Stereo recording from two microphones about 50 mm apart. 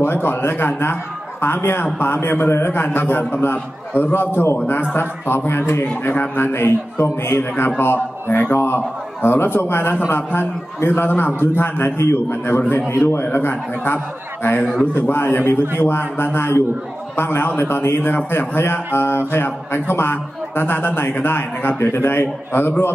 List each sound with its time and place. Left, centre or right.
0.0 s a man's voice: left
12.9 s speech: left
13.2 s a man's voice: left